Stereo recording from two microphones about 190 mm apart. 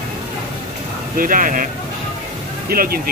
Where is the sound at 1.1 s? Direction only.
45° right (ahead or behind).